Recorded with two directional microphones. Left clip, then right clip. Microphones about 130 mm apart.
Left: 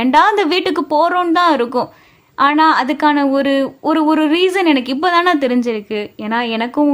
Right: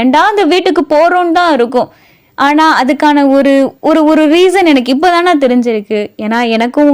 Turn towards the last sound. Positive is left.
turn(degrees=-50)  # may be behind; listen again after turning